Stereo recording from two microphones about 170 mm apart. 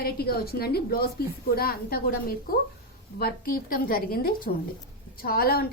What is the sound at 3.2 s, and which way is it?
A woman's voice, 60° left (ahead or behind).